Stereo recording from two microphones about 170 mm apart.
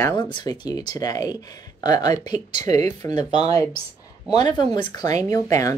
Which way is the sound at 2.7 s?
40° right (ahead or behind).